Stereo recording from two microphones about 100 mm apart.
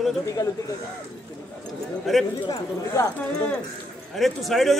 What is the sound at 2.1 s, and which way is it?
Speech, centre (ahead or behind).